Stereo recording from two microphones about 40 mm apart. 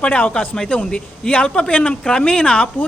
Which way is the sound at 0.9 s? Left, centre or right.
Centre.